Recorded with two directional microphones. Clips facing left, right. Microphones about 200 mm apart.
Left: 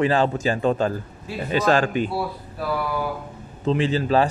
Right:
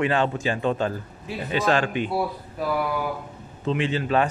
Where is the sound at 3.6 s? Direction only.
35° left (ahead or behind).